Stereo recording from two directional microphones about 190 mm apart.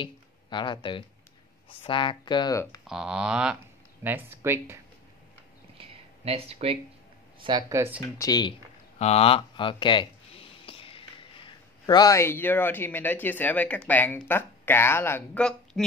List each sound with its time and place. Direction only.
0.0 s speech: 25° left (ahead or behind)
2.9 s speech: 5° right (ahead or behind)
5.8 s a sound: 30° right (ahead or behind)
7.4 s speech: 25° right (ahead or behind)
8.2 s speech: 20° left (ahead or behind)
8.9 s speech: 35° left (ahead or behind); by 15.8 s 5° left (ahead or behind)